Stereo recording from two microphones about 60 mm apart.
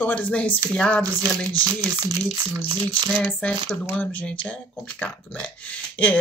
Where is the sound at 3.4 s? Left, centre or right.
Left.